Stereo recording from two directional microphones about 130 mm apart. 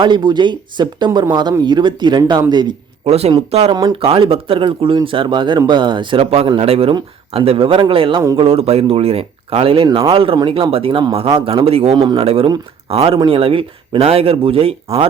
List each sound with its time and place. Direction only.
0.0 s speech: 35° right (ahead or behind)
3.0 s speech: 55° right (ahead or behind)
11.9 s speech: 35° right (ahead or behind)
12.2 s speech: 50° right (ahead or behind)